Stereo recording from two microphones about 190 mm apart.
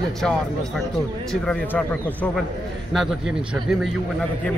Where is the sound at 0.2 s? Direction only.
Centre (ahead or behind).